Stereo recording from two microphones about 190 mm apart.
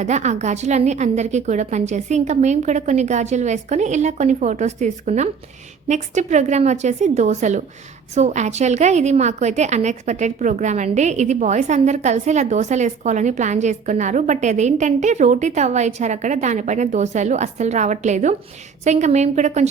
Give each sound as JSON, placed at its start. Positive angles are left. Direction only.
{"t": 0.0, "sound": "a woman's voice", "side_deg": -40}